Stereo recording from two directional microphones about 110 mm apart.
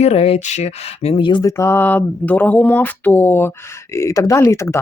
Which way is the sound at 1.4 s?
25° left (ahead or behind).